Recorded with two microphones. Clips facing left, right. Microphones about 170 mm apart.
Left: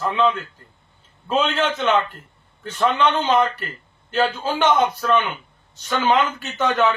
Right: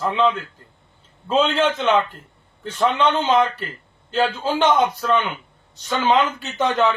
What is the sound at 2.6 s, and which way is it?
Speech, 10° right (ahead or behind).